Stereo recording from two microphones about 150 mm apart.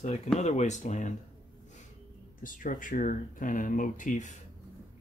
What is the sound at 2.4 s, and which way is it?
Speech, 65° left (ahead or behind).